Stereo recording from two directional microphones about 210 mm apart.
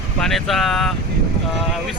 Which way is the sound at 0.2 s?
Centre (ahead or behind).